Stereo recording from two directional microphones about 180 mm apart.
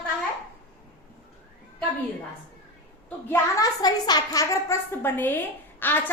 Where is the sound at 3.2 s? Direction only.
20° left (ahead or behind).